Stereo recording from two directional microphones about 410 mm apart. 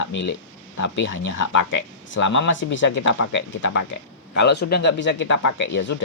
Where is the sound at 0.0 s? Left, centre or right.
Left.